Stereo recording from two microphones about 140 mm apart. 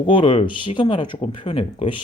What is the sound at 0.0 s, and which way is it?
Speech, 35° left (ahead or behind).